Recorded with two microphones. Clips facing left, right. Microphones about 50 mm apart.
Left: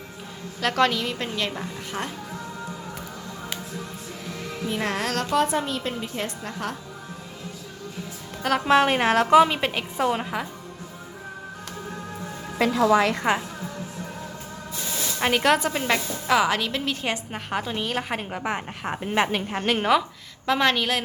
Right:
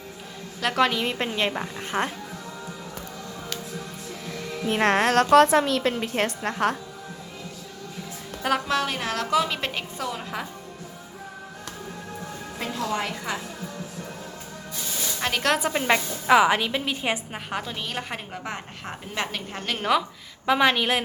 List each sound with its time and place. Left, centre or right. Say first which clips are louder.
0.6 s a woman's voice: left 1 dB; centre
0.9 s a woman's voice: right 2 dB; right
4.6 s speech: right 6 dB; right
5.3 s a woman's voice: right 6 dB; right
8.4 s a woman's voice: left 1 dB; centre
8.6 s a woman's voice: left 7 dB; left
9.6 s a woman's voice: left 3 dB; centre
10.0 s a woman's voice: left 9 dB; left
13.0 s a woman's voice: left 8 dB; left
15.2 s a woman's voice: left 4 dB; centre
15.5 s a woman's voice: right 1 dB; centre
17.3 s a woman's voice: left 3 dB; centre
18.2 s a woman's voice: left 5 dB; centre
20.5 s a woman's voice: right 1 dB; centre